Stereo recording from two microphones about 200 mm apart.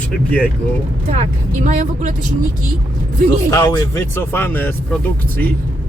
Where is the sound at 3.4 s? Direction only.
15° left (ahead or behind).